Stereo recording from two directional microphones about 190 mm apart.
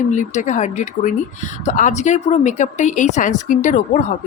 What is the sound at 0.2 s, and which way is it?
Speech, 40° left (ahead or behind).